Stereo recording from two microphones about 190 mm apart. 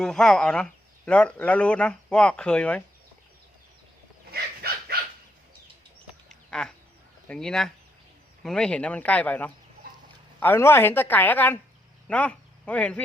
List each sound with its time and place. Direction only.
0.0 s speech: 5° left (ahead or behind)
4.3 s a sound: 55° right (ahead or behind)
6.2 s duck: 5° left (ahead or behind)
7.3 s a woman's voice: 5° left (ahead or behind)